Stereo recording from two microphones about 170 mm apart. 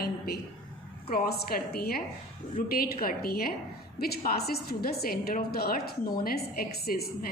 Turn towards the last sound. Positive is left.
turn(degrees=60)  # may be behind; listen again after turning